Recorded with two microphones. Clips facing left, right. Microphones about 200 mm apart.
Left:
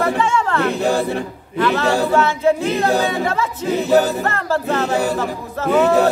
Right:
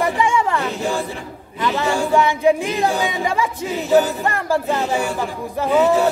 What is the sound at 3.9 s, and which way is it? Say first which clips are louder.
A capella: even; 40° left (ahead or behind).